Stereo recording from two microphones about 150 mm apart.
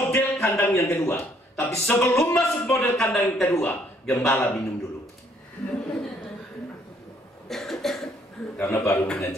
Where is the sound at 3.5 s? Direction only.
15° left (ahead or behind).